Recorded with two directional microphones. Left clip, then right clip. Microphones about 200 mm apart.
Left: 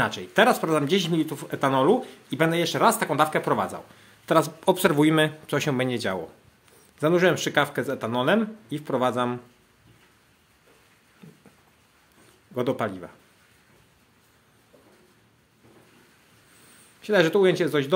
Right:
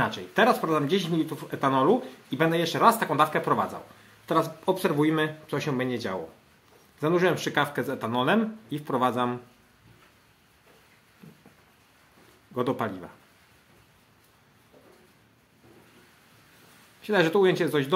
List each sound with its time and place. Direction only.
0.0 s speech: 20° left (ahead or behind)
12.5 s speech: 15° left (ahead or behind)
17.0 s speech: 15° left (ahead or behind)